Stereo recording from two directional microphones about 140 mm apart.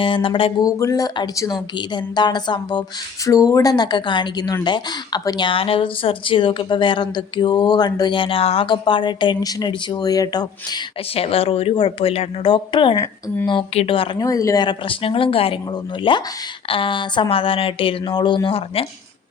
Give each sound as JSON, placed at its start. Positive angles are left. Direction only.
{"t": 0.0, "sound": "speech", "side_deg": 40}
{"t": 0.6, "sound": "speech", "side_deg": 25}
{"t": 11.1, "sound": "speech", "side_deg": 45}
{"t": 14.2, "sound": "speech", "side_deg": 25}